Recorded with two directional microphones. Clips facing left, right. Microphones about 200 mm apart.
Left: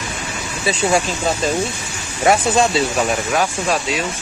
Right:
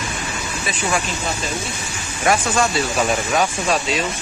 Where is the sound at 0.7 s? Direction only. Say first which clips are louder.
Left 6 dB; 30° left (ahead or behind).